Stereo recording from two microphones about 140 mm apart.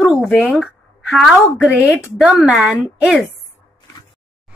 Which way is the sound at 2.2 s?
10° right (ahead or behind).